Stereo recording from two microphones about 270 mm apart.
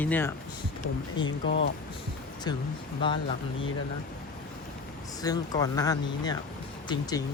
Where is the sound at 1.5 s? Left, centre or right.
Left.